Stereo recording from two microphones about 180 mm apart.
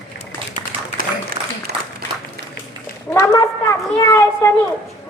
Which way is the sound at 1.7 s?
65° right (ahead or behind).